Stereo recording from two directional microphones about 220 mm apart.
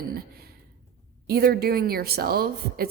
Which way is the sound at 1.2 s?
45° right (ahead or behind).